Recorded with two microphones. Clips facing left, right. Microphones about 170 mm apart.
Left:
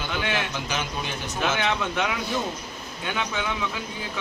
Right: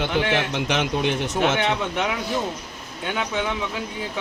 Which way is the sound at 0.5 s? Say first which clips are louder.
Right 7 dB; 80° right.